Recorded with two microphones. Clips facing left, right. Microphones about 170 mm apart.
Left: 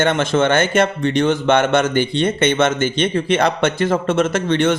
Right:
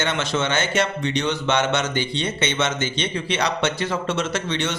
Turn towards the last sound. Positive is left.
turn(degrees=50)  # may be behind; listen again after turning